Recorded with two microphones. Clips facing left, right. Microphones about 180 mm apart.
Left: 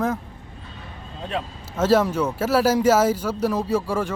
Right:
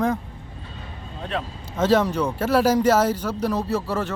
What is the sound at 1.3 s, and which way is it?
Speech, 5° left (ahead or behind).